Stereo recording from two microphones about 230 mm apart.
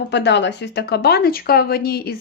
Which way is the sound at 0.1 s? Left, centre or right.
Left.